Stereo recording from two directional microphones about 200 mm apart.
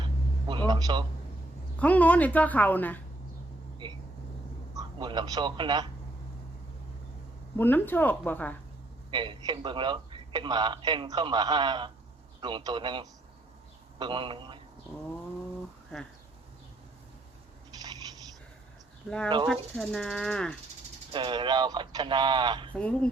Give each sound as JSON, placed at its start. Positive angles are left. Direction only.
{"t": 0.0, "sound": "a sound", "side_deg": -25}
{"t": 0.7, "sound": "a man's voice", "side_deg": -20}
{"t": 1.8, "sound": "a woman's voice", "side_deg": 5}
{"t": 4.7, "sound": "a man's voice", "side_deg": -20}
{"t": 7.5, "sound": "a woman's voice", "side_deg": 10}
{"t": 9.0, "sound": "a man's voice", "side_deg": -25}
{"t": 19.5, "sound": "speech", "side_deg": 0}
{"t": 21.1, "sound": "a man's voice", "side_deg": -25}
{"t": 22.7, "sound": "a woman's voice", "side_deg": 5}